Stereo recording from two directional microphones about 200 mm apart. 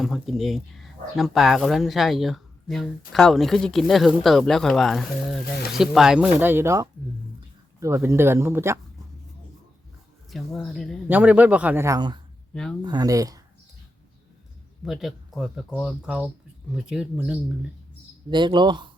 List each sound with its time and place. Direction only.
0.0 s a man's voice: centre (ahead or behind)
10.3 s a man's voice: centre (ahead or behind); by 13.4 s 15° right (ahead or behind)
14.8 s speech: centre (ahead or behind)
18.3 s speech: 20° right (ahead or behind)